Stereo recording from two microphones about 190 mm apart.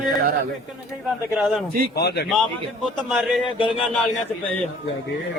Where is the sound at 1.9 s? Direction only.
60° left (ahead or behind).